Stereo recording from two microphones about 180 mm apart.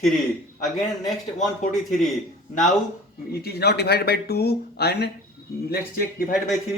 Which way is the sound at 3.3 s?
60° left (ahead or behind).